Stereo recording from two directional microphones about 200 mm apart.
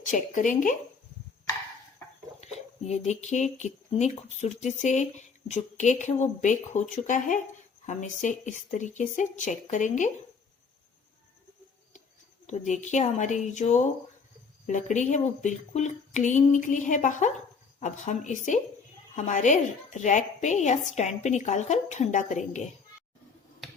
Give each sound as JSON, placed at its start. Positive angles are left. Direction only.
{"t": 0.0, "sound": "speech", "side_deg": 40}
{"t": 2.4, "sound": "speech", "side_deg": 35}
{"t": 12.5, "sound": "speech", "side_deg": 35}